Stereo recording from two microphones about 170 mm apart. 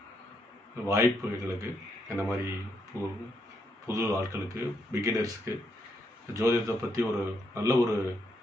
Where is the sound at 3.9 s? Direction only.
20° right (ahead or behind).